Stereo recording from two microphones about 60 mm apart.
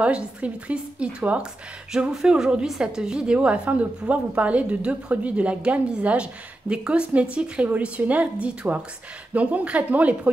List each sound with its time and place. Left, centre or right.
0.0 s a woman's voice: right